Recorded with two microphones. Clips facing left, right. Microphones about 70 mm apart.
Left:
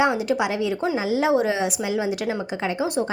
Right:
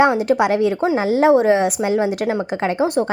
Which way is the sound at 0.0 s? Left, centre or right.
Right.